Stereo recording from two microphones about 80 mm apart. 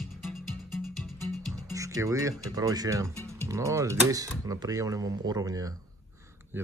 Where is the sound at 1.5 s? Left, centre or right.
Right.